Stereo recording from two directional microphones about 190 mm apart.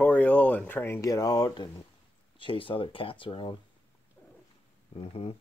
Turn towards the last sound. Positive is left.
turn(degrees=30)  # may be behind; listen again after turning